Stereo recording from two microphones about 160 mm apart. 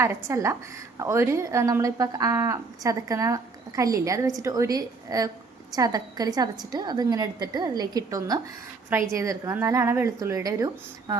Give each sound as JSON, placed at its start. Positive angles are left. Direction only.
{"t": 0.0, "sound": "a woman's voice", "side_deg": -15}